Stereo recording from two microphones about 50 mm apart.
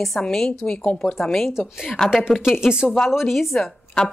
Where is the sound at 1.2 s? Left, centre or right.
Centre.